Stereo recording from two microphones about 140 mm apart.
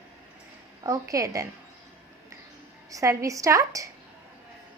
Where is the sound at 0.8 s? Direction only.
25° right (ahead or behind).